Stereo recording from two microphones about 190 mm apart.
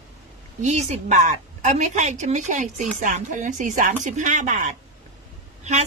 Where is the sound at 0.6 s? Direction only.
40° right (ahead or behind).